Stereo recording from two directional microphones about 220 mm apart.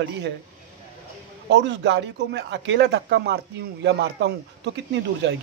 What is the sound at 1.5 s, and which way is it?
Speech, 50° right (ahead or behind).